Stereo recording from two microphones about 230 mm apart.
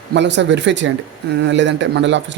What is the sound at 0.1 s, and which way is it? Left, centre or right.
A man's voice, right.